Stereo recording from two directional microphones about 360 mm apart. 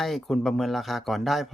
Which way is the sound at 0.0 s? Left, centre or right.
Centre.